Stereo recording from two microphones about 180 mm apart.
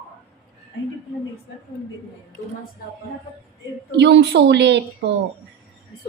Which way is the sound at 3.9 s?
70° right (ahead or behind).